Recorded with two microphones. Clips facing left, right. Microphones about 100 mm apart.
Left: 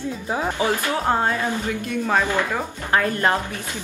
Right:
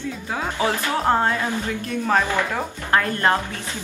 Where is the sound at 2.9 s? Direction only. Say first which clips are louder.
Even; 15° left (ahead or behind).